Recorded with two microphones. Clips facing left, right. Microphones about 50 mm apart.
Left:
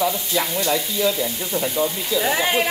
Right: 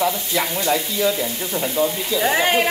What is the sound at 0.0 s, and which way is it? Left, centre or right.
Frying, right.